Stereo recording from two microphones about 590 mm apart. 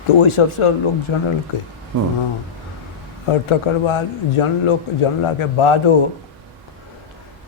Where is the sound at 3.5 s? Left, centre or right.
Left.